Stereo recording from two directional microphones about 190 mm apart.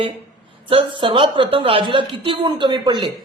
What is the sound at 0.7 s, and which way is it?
A woman's voice, 30° right (ahead or behind).